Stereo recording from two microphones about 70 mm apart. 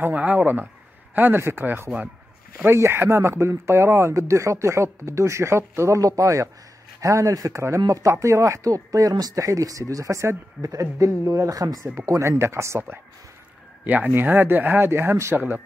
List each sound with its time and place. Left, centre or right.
0.0 s speech: right
13.8 s speech: right
15.3 s speech: right